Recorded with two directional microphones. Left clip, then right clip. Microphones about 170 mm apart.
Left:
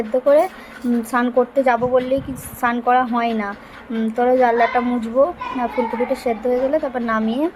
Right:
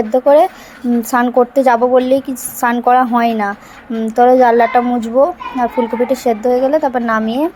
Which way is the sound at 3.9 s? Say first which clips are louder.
Right 4 dB; 10° right (ahead or behind).